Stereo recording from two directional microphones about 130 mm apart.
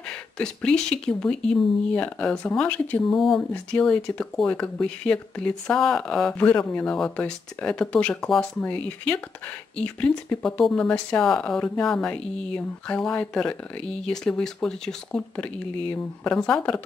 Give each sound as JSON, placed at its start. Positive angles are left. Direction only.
{"t": 0.4, "sound": "speech", "side_deg": 5}